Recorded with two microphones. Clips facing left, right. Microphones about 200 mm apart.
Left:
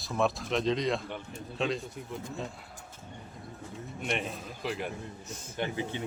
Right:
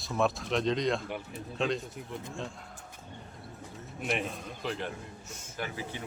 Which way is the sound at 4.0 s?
Centre (ahead or behind).